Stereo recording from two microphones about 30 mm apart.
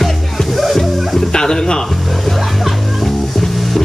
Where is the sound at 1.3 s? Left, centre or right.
Left.